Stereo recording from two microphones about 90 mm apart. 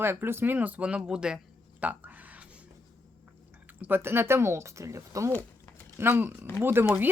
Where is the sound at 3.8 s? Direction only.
25° right (ahead or behind).